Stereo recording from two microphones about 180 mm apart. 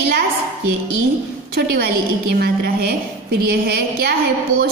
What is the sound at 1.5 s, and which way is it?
A woman's voice, 60° right (ahead or behind).